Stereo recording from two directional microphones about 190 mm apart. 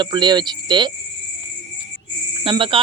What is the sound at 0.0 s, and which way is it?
Speech, 25° right (ahead or behind).